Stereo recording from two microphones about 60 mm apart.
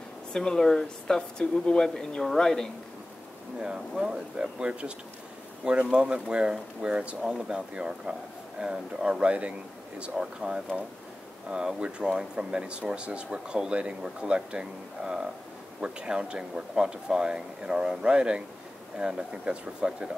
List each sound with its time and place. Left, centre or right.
0.3 s speech: centre
3.5 s speech: centre